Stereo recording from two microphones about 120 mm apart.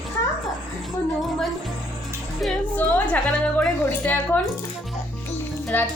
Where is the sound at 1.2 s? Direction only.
Centre (ahead or behind).